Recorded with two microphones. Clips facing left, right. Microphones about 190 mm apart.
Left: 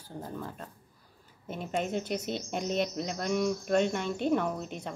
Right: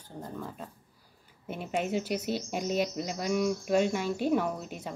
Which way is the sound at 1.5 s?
10° right (ahead or behind).